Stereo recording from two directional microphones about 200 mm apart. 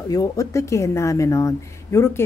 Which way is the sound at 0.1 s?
15° left (ahead or behind).